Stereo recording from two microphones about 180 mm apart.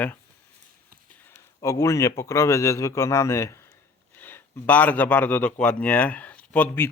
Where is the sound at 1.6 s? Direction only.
15° left (ahead or behind).